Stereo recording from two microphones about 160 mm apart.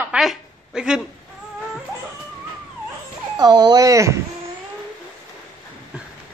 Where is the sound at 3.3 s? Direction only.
25° right (ahead or behind).